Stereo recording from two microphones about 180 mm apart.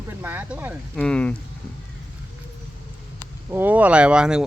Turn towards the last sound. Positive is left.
turn(degrees=-5)  # may be behind; listen again after turning